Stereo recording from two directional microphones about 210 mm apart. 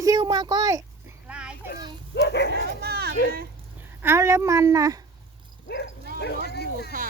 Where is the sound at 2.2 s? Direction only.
55° left (ahead or behind).